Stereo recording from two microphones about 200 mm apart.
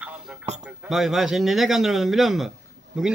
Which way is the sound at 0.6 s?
5° right (ahead or behind).